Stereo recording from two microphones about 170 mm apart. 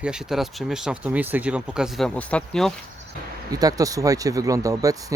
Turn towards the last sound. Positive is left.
turn(degrees=-20)  # may be behind; listen again after turning